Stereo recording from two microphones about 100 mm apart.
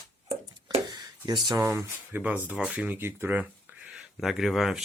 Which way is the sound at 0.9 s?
45° right (ahead or behind).